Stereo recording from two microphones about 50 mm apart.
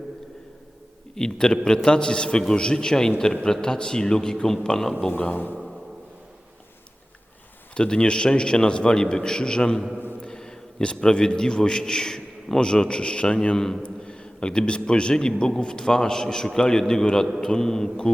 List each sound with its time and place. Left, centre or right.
1.1 s a man's voice: centre
5.2 s a man's voice: left
7.8 s a man's voice: centre